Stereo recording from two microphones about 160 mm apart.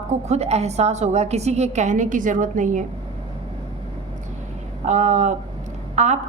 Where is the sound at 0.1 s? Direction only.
45° right (ahead or behind).